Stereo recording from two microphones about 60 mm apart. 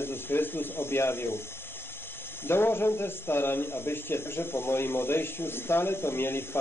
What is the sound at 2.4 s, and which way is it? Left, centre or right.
Speech, left.